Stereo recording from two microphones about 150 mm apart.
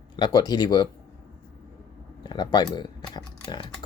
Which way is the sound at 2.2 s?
30° left (ahead or behind).